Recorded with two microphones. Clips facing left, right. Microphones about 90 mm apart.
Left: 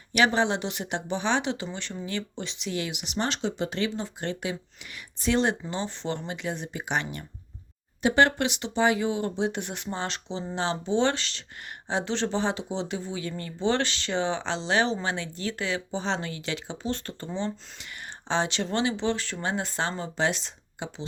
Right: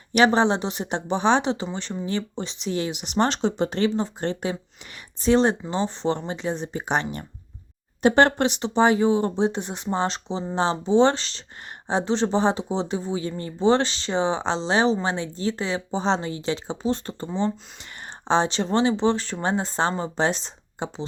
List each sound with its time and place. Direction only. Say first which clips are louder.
0.1 s speech: right 5 dB; 35° right (ahead or behind); by 17.5 s 15° right (ahead or behind)
18.3 s speech: right 6 dB; 30° right (ahead or behind)